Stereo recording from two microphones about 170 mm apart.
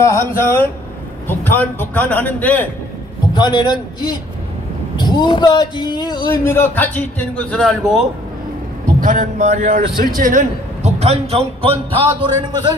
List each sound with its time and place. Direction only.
0.0 s a man's voice: 15° left (ahead or behind)
3.3 s speech: 25° left (ahead or behind)
6.4 s a man's voice: 15° left (ahead or behind)
9.0 s a man's voice: 50° right (ahead or behind); by 12.7 s 30° right (ahead or behind)